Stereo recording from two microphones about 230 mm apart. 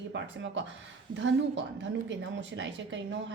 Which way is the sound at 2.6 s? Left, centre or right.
Right.